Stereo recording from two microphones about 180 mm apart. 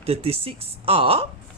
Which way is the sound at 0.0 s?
35° right (ahead or behind).